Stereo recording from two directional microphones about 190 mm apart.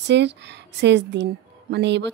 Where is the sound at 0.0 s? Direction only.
65° right (ahead or behind).